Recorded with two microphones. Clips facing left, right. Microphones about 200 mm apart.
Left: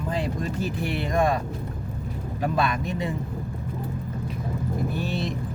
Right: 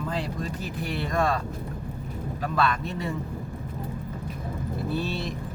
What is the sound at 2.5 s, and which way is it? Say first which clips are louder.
Speech: right 1 dB; 15° left (ahead or behind).